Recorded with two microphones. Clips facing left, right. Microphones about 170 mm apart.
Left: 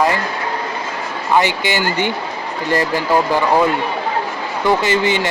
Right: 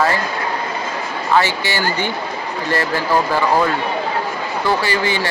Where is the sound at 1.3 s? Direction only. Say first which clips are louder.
Left 2 dB; 15° left (ahead or behind).